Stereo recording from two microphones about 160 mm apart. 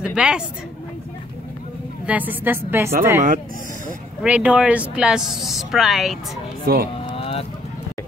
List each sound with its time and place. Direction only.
0.0 s speech: 5° right (ahead or behind)
2.0 s a woman's voice: 10° right (ahead or behind)
6.6 s speech: 75° right (ahead or behind)
7.1 s vehicle: 35° left (ahead or behind)